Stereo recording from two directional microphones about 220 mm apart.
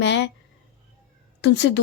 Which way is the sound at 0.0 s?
55° left (ahead or behind).